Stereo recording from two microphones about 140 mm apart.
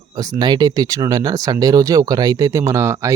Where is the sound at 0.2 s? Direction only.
30° right (ahead or behind).